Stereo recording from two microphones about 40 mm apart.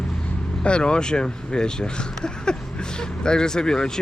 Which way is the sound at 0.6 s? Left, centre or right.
Left.